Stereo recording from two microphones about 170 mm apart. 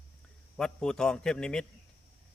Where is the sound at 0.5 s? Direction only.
5° left (ahead or behind).